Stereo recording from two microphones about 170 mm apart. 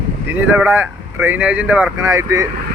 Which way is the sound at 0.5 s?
10° right (ahead or behind).